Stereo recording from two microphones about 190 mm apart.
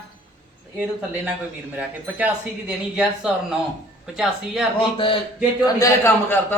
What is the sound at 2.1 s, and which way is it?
Speech, 5° right (ahead or behind).